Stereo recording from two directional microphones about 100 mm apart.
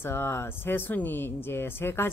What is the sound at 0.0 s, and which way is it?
Speech, 25° left (ahead or behind).